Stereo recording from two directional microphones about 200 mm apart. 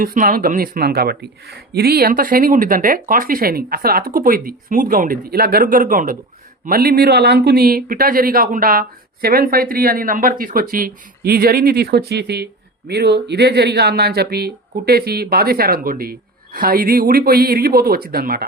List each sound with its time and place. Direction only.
0.0 s speech: 45° right (ahead or behind)